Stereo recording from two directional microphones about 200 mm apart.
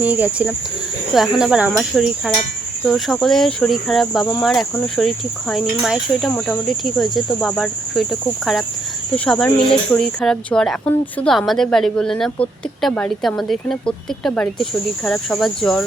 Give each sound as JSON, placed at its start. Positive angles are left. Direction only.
{"t": 0.0, "sound": "speech", "side_deg": -10}